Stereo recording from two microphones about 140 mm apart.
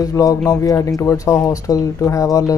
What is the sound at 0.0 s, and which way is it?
Speech, 25° left (ahead or behind).